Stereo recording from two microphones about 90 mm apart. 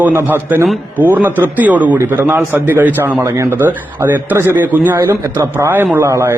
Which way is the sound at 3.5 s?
20° right (ahead or behind).